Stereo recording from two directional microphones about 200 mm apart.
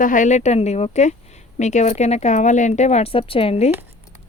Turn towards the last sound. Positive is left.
turn(degrees=30)  # may be behind; listen again after turning